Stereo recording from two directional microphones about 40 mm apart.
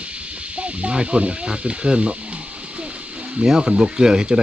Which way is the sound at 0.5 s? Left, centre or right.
Right.